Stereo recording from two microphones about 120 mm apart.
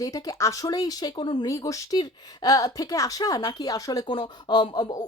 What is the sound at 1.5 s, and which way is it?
Speech, 25° left (ahead or behind).